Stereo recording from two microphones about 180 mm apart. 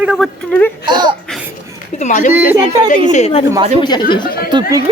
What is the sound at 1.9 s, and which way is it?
Speech, 45° left (ahead or behind).